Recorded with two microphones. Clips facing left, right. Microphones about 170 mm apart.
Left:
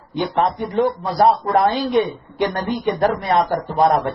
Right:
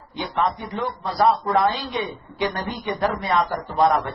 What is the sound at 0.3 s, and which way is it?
A man's voice, 45° left (ahead or behind).